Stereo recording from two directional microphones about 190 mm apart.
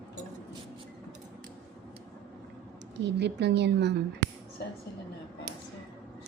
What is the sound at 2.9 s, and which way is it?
A woman's voice, 65° right (ahead or behind).